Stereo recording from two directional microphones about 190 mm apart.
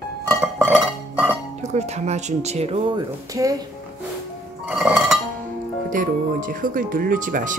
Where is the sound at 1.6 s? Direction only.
35° right (ahead or behind).